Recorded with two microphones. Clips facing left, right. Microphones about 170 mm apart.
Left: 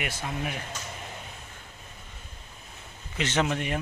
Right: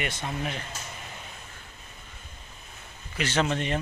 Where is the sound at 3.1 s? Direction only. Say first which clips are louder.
Even; 20° left (ahead or behind).